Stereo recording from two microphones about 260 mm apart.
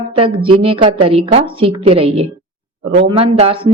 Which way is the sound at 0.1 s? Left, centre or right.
Centre.